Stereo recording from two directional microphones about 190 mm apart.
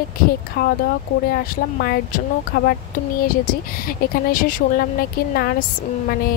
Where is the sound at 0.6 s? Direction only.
55° left (ahead or behind).